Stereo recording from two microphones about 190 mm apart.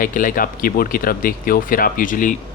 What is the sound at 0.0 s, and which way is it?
Speech, 45° left (ahead or behind).